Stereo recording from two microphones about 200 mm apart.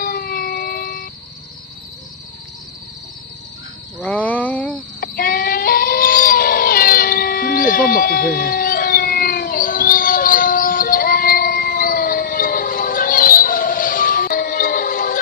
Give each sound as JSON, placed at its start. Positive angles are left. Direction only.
{"t": 0.0, "sound": "music", "side_deg": 45}
{"t": 4.0, "sound": "speech", "side_deg": 5}
{"t": 5.0, "sound": "a sound", "side_deg": 45}